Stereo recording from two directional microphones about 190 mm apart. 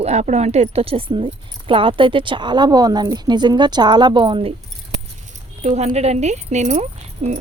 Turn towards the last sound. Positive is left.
turn(degrees=-35)  # may be behind; listen again after turning